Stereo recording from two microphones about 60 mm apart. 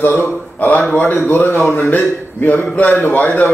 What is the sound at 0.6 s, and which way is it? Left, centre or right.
A man's voice, left.